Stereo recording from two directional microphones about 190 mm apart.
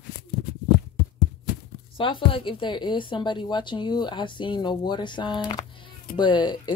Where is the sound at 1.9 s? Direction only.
25° left (ahead or behind).